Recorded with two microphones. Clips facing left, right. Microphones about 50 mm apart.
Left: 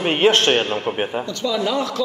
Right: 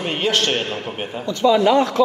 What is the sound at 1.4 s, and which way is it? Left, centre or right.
Speech, right.